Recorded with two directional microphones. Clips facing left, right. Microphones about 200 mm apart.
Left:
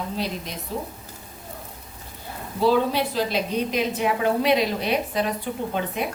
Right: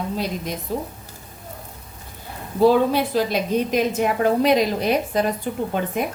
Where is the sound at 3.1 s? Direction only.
45° right (ahead or behind).